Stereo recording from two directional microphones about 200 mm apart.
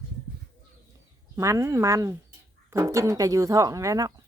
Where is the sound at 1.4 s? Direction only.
15° right (ahead or behind).